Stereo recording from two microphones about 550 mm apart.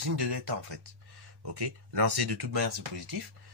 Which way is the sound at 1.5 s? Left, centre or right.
Right.